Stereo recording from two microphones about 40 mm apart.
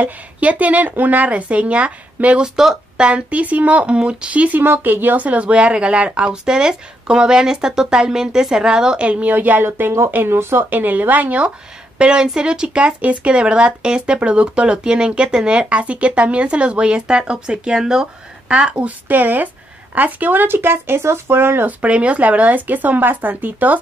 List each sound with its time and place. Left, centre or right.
0.0 s a woman's voice: right
2.4 s speech: centre
3.0 s a woman's voice: right
4.6 s speech: right
5.2 s speech: right
9.0 s a woman's voice: right
9.3 s speech: right
9.7 s speech: right
10.7 s speech: right
12.0 s speech: right
18.7 s a woman's voice: right
20.4 s speech: right
21.6 s speech: right